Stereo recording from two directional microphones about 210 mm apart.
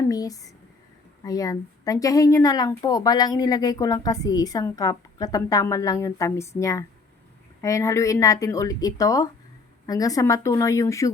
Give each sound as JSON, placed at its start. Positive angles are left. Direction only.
{"t": 0.1, "sound": "a woman's voice", "side_deg": 15}